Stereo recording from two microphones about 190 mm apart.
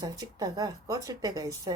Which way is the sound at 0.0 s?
20° right (ahead or behind).